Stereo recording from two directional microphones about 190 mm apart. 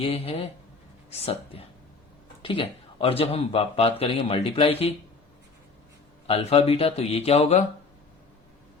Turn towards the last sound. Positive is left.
turn(degrees=35)  # may be behind; listen again after turning